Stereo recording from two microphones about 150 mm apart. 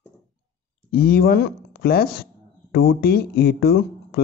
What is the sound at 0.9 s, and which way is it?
Speech, 80° left.